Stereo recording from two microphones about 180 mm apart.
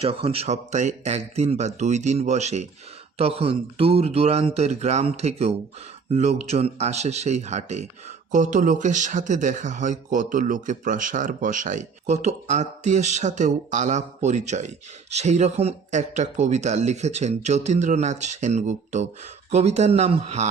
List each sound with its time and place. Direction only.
0.0 s speech: 30° right (ahead or behind)